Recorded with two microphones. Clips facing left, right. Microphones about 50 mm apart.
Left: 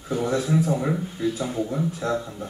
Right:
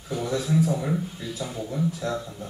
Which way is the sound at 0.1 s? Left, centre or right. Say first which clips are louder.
Left 3 dB; left.